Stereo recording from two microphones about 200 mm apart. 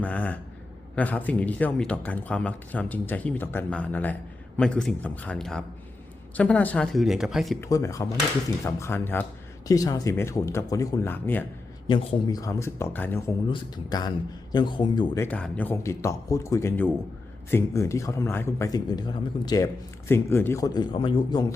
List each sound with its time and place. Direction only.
0.0 s speech: 5° left (ahead or behind)
7.6 s speech: 15° left (ahead or behind)
11.9 s speech: 20° left (ahead or behind)